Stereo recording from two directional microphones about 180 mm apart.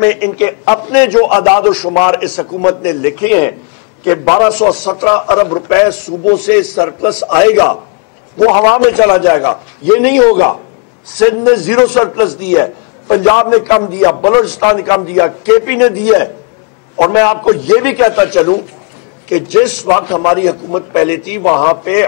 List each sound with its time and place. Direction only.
0.0 s a man's voice: 10° left (ahead or behind)
10.3 s a man's voice: 20° left (ahead or behind)
11.2 s a man's voice: 10° left (ahead or behind)
21.4 s a man's voice: 25° left (ahead or behind)